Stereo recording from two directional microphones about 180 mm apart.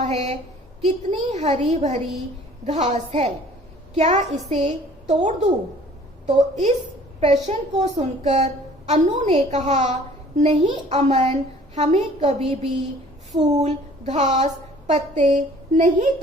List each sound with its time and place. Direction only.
0.0 s a woman's voice: 35° right (ahead or behind)
13.6 s a woman's voice: 40° right (ahead or behind)